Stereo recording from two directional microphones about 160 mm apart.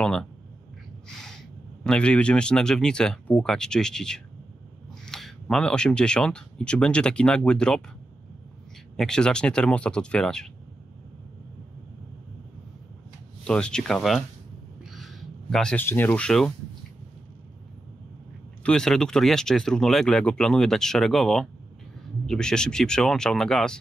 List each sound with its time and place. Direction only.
0.0 s speech: 5° left (ahead or behind)
8.9 s speech: 5° left (ahead or behind)
13.4 s speech: 5° left (ahead or behind)
18.6 s speech: 5° left (ahead or behind)